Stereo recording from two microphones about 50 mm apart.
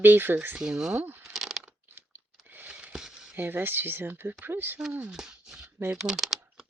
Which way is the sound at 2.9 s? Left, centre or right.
Centre.